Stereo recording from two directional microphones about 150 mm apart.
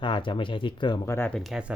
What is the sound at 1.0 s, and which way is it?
Speech, 20° left (ahead or behind).